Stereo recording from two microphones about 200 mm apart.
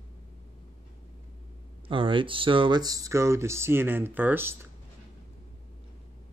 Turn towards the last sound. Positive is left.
turn(degrees=-10)  # may be behind; listen again after turning